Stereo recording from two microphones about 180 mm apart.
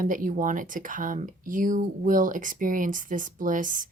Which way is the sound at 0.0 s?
50° right (ahead or behind).